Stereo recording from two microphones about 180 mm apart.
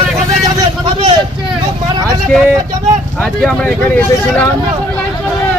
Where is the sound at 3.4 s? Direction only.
5° left (ahead or behind).